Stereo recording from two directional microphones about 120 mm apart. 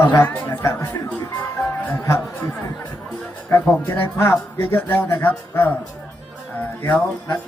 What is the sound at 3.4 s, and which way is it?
Speech, 15° left (ahead or behind).